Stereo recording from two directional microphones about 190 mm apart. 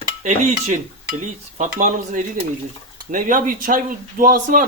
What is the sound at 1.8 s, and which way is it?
Speech, 45° right (ahead or behind).